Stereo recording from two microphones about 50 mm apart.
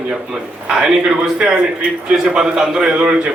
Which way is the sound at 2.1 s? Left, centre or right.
Centre.